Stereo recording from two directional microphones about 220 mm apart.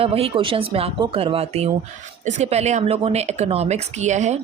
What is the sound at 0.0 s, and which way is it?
Speech, 25° right (ahead or behind).